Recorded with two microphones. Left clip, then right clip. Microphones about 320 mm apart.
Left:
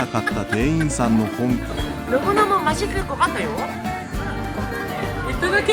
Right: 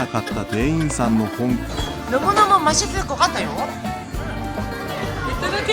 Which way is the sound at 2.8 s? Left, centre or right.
Centre.